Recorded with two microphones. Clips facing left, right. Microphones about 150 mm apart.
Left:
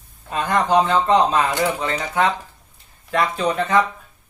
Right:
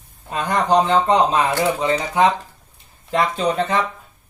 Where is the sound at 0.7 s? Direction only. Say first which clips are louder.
Right 2 dB; 20° right (ahead or behind).